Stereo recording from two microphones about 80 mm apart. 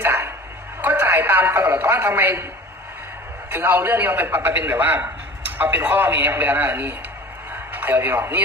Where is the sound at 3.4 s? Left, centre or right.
Right.